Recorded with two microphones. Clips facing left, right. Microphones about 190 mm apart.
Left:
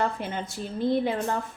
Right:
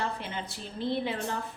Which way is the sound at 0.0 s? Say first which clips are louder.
Left 6 dB; 50° left (ahead or behind).